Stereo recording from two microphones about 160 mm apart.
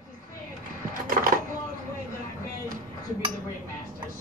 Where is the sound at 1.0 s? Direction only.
65° right (ahead or behind).